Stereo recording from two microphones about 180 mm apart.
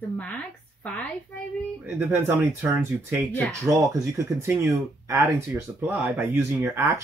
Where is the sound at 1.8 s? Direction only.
10° right (ahead or behind).